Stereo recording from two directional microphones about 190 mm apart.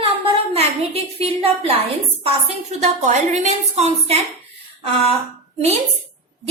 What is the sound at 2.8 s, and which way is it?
A woman's voice, 40° right (ahead or behind).